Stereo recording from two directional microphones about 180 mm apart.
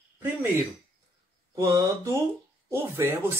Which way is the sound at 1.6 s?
20° right (ahead or behind).